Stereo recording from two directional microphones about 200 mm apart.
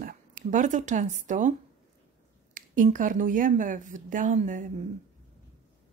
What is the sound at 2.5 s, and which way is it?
A woman's voice, 40° right (ahead or behind).